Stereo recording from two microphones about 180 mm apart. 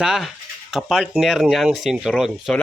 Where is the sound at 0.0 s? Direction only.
5° right (ahead or behind).